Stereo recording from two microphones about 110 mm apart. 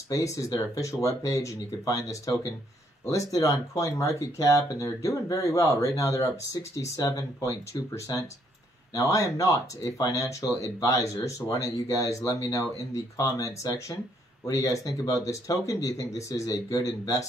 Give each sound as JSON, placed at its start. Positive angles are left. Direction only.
{"t": 0.1, "sound": "speech", "side_deg": 30}